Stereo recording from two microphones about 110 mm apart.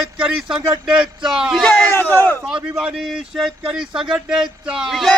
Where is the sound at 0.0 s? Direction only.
5° right (ahead or behind).